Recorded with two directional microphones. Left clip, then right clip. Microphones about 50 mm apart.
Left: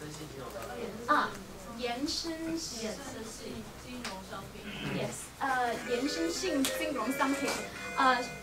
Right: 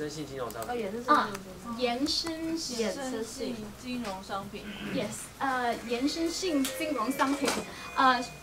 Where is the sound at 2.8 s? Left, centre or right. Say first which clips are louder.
Right 7 dB; right.